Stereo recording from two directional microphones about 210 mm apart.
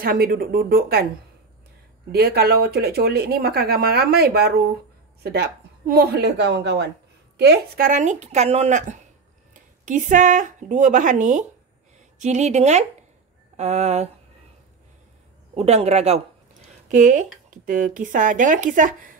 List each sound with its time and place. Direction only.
0.0 s speech: 45° right (ahead or behind)
2.1 s speech: 50° right (ahead or behind); by 14.1 s 30° right (ahead or behind)
15.5 s speech: 30° right (ahead or behind)